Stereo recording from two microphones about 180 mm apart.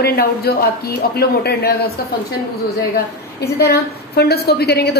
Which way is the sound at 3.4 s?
60° left (ahead or behind).